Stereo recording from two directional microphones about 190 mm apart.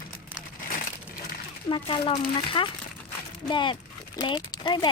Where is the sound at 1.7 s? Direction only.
25° left (ahead or behind).